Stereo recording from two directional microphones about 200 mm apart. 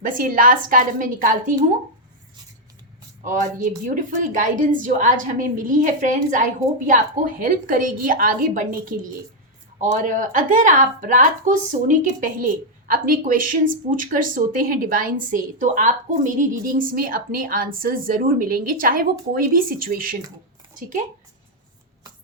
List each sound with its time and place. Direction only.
0.0 s a woman's voice: 45° right (ahead or behind)
3.2 s a woman's voice: 40° right (ahead or behind)